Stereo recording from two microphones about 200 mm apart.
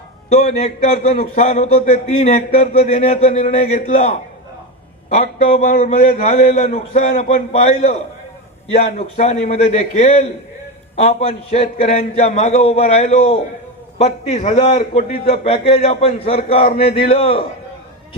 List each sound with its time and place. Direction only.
0.3 s a man's voice: 35° left (ahead or behind)